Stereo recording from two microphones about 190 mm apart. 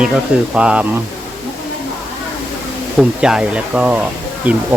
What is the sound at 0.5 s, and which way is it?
Speech, 5° right (ahead or behind).